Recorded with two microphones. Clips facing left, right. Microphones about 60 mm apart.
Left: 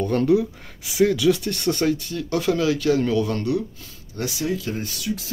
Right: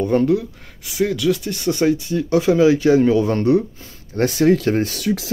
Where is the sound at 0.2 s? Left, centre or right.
Centre.